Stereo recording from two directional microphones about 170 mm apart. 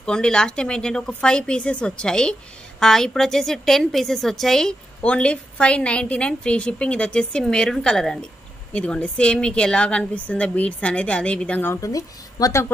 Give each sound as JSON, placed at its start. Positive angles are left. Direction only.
{"t": 0.0, "sound": "a woman's voice", "side_deg": 5}